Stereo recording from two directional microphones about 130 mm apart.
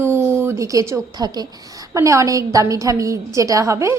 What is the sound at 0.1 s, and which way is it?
A woman's voice, 20° right (ahead or behind).